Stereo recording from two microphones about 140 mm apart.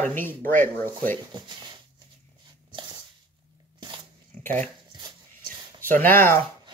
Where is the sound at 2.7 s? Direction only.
35° right (ahead or behind).